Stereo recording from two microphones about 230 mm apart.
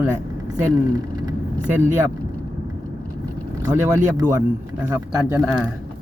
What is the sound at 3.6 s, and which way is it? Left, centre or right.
Speech, centre.